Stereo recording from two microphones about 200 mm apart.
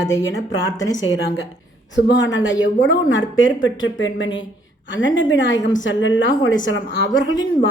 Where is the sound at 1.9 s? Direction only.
65° left (ahead or behind).